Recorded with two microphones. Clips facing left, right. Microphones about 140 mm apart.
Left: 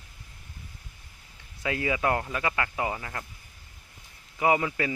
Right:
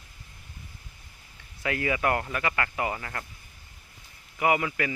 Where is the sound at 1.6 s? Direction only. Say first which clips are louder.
Even; 20° left (ahead or behind).